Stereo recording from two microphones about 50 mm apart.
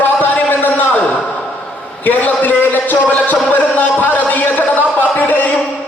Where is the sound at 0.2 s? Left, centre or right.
Left.